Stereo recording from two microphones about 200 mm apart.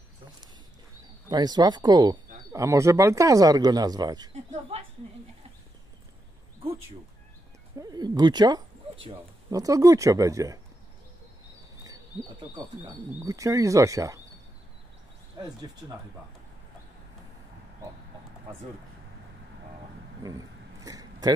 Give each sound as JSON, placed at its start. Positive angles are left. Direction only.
{"t": 1.3, "sound": "speech", "side_deg": -20}
{"t": 7.8, "sound": "speech", "side_deg": -20}
{"t": 12.5, "sound": "speech", "side_deg": -15}
{"t": 15.3, "sound": "speech", "side_deg": -20}
{"t": 20.2, "sound": "vehicle", "side_deg": -20}